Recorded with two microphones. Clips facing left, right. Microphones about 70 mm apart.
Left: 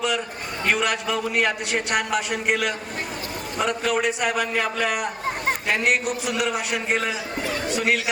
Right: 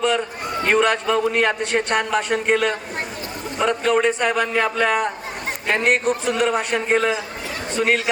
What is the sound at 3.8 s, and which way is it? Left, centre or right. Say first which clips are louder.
A man's voice: right 6 dB; right.